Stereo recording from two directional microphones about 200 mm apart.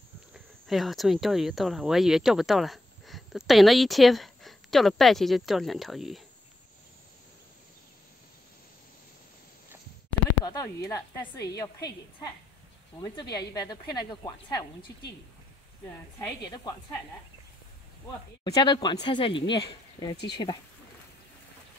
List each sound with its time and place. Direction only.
0.3 s speech: centre (ahead or behind)
10.4 s a woman's voice: 20° left (ahead or behind)
13.0 s speech: 20° left (ahead or behind)
16.2 s speech: 20° left (ahead or behind)
18.4 s speech: 20° left (ahead or behind)